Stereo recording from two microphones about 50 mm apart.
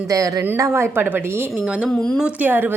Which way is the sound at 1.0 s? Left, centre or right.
Right.